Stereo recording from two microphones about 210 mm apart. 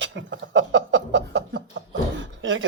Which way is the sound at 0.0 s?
60° right (ahead or behind).